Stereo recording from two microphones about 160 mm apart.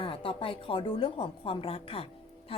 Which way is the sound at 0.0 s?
35° left (ahead or behind).